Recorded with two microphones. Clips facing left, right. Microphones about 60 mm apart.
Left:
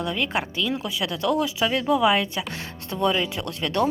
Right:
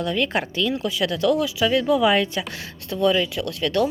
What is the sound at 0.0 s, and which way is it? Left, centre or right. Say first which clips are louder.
Speech: right 3 dB; centre.